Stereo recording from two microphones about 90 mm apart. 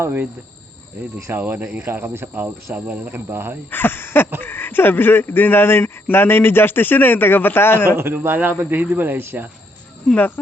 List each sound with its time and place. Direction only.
0.0 s speech: 25° right (ahead or behind)
1.3 s speech: 20° right (ahead or behind)
3.7 s speech: 25° left (ahead or behind)
7.9 s speech: 25° right (ahead or behind)
10.2 s speech: 20° left (ahead or behind)